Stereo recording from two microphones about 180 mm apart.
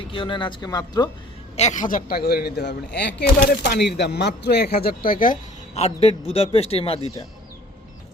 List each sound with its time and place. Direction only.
0.1 s speech: 30° left (ahead or behind)
1.5 s speech: 40° left (ahead or behind)